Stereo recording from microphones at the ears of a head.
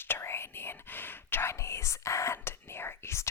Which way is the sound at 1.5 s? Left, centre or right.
Left.